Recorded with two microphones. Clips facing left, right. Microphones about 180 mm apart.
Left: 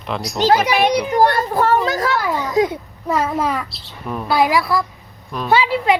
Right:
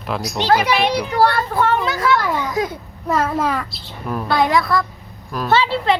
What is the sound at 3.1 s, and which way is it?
Speech, 5° left (ahead or behind).